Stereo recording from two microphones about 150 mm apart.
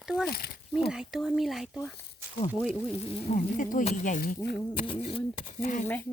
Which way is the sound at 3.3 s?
60° left (ahead or behind).